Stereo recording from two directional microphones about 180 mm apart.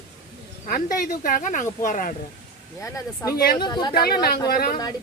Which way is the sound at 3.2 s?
15° left (ahead or behind).